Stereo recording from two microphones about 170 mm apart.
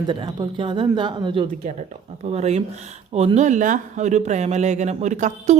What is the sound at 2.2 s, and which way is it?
A woman's voice, 40° right (ahead or behind).